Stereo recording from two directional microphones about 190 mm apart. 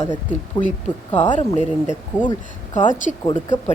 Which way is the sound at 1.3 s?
40° left (ahead or behind).